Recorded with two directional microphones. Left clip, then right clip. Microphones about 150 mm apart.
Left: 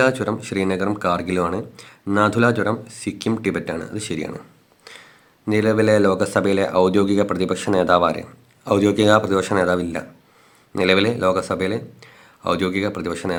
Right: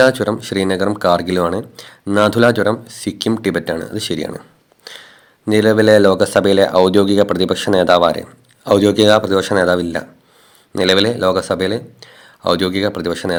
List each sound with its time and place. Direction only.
0.0 s speech: 30° right (ahead or behind)